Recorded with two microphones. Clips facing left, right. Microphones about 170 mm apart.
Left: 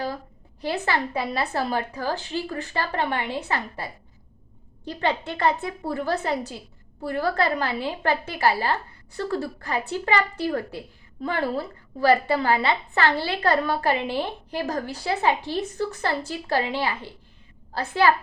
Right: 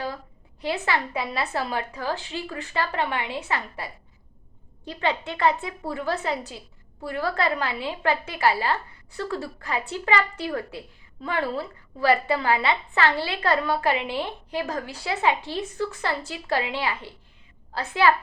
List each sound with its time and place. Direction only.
0.6 s a woman's voice: 35° left (ahead or behind)
4.9 s a woman's voice: 40° left (ahead or behind)